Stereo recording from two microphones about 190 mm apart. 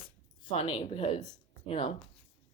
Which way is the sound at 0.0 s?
30° left (ahead or behind).